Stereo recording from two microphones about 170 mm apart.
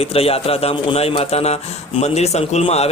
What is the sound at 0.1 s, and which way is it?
A man's voice, 35° left (ahead or behind).